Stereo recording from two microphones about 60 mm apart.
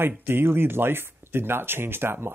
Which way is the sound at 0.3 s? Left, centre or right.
Right.